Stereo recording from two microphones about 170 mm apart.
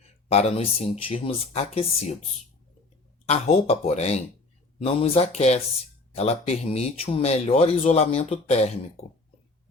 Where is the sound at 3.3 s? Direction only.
35° left (ahead or behind).